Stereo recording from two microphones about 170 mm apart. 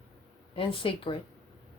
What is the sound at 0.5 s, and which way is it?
Speech, 30° left (ahead or behind).